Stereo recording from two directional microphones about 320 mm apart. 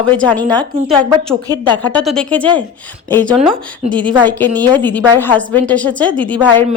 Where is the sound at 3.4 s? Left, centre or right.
Centre.